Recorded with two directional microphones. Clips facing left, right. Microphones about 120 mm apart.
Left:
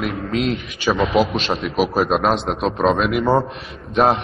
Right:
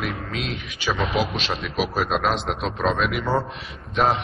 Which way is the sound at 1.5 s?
40° left (ahead or behind).